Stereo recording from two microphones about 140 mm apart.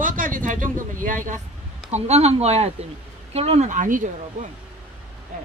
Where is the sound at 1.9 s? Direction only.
50° right (ahead or behind); by 4.5 s 65° right (ahead or behind).